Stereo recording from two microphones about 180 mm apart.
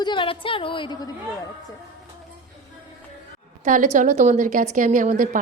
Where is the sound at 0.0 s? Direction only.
25° left (ahead or behind).